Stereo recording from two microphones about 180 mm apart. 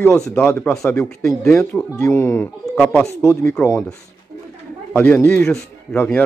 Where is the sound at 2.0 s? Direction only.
15° left (ahead or behind).